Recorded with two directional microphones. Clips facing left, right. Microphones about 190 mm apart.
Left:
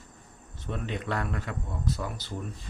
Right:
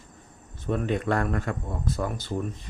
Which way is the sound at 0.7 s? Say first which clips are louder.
Right 7 dB; 50° right (ahead or behind).